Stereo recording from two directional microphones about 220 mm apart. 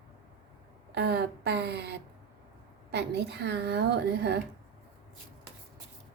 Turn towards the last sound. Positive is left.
turn(degrees=-50)  # may be behind; listen again after turning